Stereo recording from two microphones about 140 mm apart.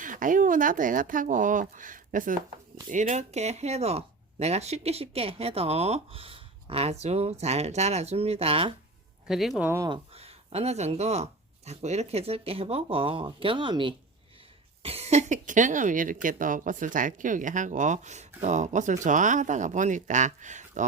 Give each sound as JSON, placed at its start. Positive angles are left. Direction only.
{"t": 0.0, "sound": "speech", "side_deg": -70}
{"t": 2.9, "sound": "speech", "side_deg": -60}
{"t": 9.2, "sound": "speech", "side_deg": 0}
{"t": 9.6, "sound": "speech", "side_deg": -20}
{"t": 9.9, "sound": "speech", "side_deg": -45}
{"t": 14.8, "sound": "speech", "side_deg": -50}